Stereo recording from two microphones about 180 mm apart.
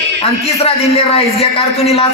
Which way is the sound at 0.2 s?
35° left (ahead or behind).